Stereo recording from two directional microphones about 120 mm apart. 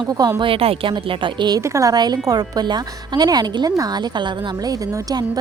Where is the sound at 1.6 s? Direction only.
25° right (ahead or behind).